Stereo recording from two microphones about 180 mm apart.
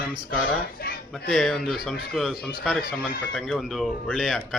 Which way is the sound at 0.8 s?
60° left (ahead or behind).